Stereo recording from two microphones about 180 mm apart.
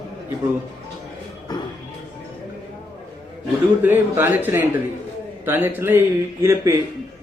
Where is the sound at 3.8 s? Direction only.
10° right (ahead or behind).